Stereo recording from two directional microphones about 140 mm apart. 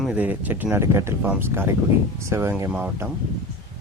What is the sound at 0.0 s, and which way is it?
Speech, 10° right (ahead or behind).